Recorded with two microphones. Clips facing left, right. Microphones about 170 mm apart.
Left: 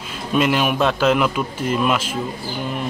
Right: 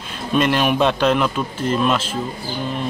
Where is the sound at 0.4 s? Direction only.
5° left (ahead or behind).